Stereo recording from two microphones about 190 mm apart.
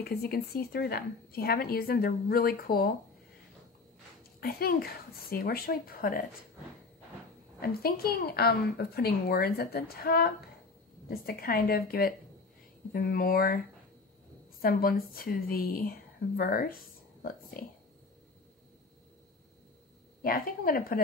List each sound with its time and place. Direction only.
0.0 s a woman's voice: 55° left (ahead or behind)
4.4 s a woman's voice: 50° left (ahead or behind)
7.6 s a woman's voice: 55° left (ahead or behind)
14.6 s a woman's voice: 50° left (ahead or behind)
20.2 s a woman's voice: 50° left (ahead or behind)